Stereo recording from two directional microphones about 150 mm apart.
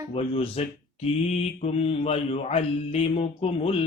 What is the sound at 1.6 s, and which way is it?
Mantra, 40° left (ahead or behind).